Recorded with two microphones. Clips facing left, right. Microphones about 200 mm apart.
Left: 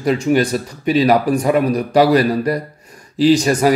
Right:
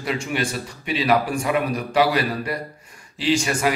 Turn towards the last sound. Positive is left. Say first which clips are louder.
# left 9 dB
turn(degrees=40)  # may be behind; listen again after turning